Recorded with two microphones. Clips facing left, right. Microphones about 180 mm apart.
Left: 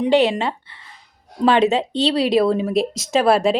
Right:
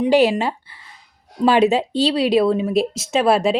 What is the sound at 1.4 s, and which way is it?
Speech, 10° right (ahead or behind).